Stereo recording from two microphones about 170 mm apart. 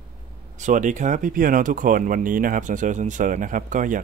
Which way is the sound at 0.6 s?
45° right (ahead or behind).